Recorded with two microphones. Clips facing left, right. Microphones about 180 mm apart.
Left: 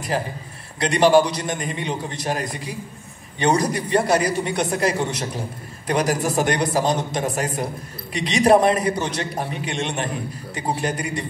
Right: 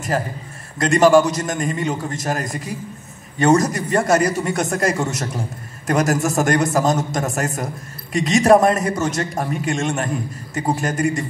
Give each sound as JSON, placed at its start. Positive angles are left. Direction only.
{"t": 0.7, "sound": "a man's voice", "side_deg": -45}